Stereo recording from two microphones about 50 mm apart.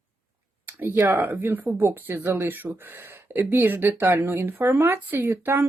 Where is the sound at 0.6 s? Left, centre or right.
Right.